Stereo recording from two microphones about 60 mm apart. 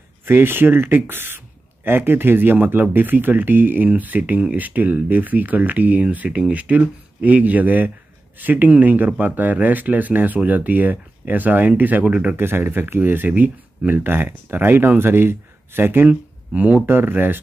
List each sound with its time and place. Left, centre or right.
0.2 s speech: right
12.0 s speech: centre
12.4 s speech: right
16.1 s speech: right